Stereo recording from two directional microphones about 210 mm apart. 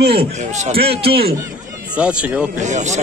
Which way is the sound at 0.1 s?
30° right (ahead or behind).